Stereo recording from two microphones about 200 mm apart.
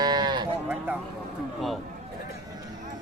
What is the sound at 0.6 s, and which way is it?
Speech, 10° right (ahead or behind).